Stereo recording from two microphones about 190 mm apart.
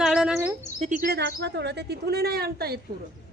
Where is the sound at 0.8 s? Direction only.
45° right (ahead or behind).